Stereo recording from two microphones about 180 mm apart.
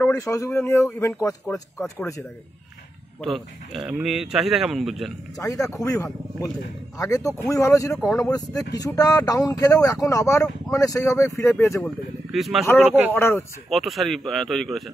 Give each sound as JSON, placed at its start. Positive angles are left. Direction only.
{"t": 0.0, "sound": "speech", "side_deg": 15}
{"t": 3.2, "sound": "speech", "side_deg": 0}
{"t": 5.4, "sound": "speech", "side_deg": 20}
{"t": 12.3, "sound": "speech", "side_deg": 0}
{"t": 13.1, "sound": "speech", "side_deg": 15}
{"t": 13.7, "sound": "speech", "side_deg": 0}